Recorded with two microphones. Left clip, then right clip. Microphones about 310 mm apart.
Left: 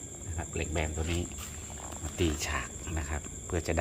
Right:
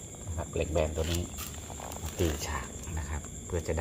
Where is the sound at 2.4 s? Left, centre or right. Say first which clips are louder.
Left 2 dB; centre.